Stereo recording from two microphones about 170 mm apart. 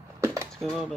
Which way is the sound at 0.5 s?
Centre (ahead or behind).